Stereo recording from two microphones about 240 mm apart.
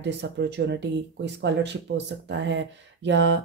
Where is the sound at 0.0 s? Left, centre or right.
Right.